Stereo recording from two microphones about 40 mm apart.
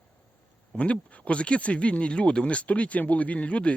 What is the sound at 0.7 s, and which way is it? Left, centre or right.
Speech, left.